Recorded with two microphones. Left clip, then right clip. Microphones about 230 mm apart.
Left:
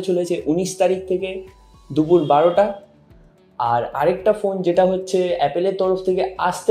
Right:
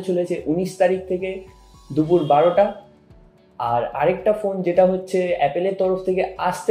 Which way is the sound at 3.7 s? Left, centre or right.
Left.